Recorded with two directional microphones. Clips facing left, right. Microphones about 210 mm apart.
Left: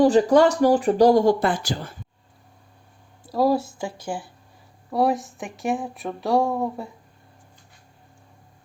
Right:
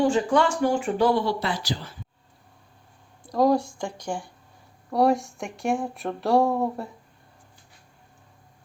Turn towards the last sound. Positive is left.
turn(degrees=0)  # may be behind; listen again after turning